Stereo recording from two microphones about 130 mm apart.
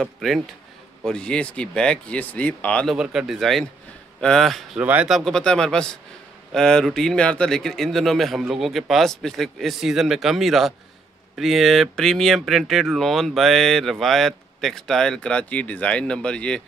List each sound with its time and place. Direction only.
0.0 s speech: centre (ahead or behind)
3.0 s speech: 5° right (ahead or behind)
4.7 s speech: 10° right (ahead or behind); by 16.6 s 10° left (ahead or behind)